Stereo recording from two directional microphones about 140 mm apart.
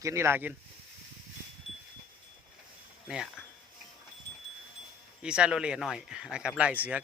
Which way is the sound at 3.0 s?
5° right (ahead or behind).